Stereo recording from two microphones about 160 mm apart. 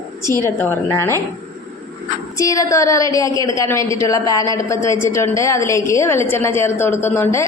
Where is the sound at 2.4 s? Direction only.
20° left (ahead or behind).